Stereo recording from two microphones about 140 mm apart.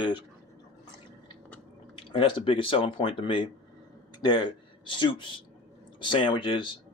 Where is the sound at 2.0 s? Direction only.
35° left (ahead or behind).